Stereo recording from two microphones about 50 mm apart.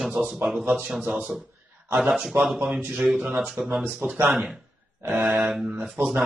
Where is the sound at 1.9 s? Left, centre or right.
Centre.